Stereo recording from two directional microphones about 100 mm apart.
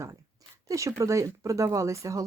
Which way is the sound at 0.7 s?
30° right (ahead or behind).